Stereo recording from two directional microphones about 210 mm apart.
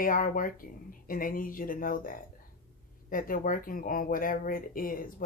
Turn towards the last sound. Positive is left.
turn(degrees=40)  # may be behind; listen again after turning